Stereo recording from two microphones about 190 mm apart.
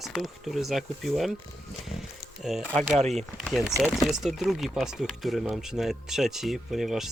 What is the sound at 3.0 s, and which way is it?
Speech, 35° right (ahead or behind).